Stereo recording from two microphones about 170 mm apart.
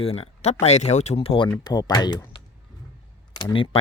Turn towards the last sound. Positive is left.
turn(degrees=30)  # may be behind; listen again after turning